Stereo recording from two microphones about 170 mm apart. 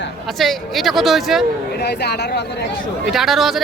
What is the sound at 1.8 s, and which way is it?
Speech, 80° left.